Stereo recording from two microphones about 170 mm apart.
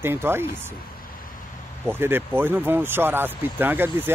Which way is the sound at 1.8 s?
10° right (ahead or behind).